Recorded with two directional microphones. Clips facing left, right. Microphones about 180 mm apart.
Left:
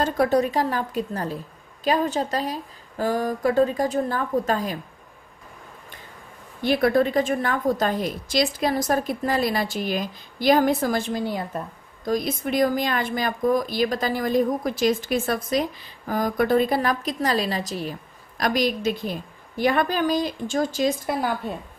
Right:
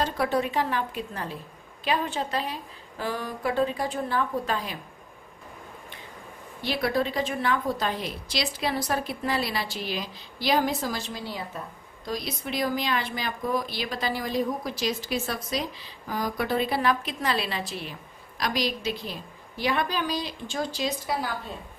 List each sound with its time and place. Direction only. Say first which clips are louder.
0.0 s a woman's voice: left 5 dB; 40° left (ahead or behind)
6.6 s a woman's voice: left 7 dB; 50° left (ahead or behind)